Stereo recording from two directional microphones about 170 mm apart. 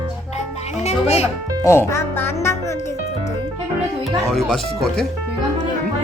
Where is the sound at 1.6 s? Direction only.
15° left (ahead or behind).